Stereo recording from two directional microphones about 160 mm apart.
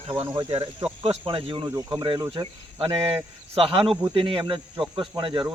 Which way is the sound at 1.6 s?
25° right (ahead or behind).